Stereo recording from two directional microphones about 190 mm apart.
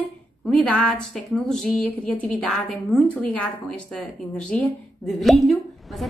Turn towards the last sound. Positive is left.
turn(degrees=0)  # may be behind; listen again after turning